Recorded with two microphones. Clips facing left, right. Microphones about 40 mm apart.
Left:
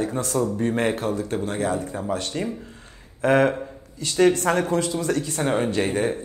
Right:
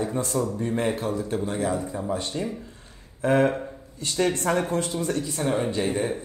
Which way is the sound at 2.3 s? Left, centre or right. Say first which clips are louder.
Left 2 dB; left.